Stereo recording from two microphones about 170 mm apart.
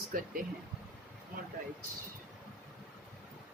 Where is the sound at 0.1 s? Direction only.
55° right (ahead or behind).